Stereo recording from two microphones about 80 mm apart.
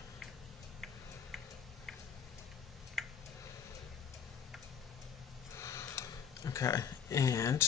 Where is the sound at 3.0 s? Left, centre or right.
Centre.